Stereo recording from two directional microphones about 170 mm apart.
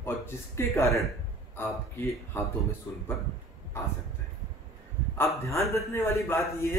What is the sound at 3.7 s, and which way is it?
Speech, 15° left (ahead or behind).